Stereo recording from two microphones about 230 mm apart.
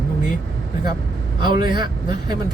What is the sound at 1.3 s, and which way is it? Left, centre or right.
Speech, centre.